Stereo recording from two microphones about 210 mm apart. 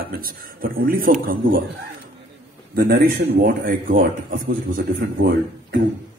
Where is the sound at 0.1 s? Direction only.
45° right (ahead or behind).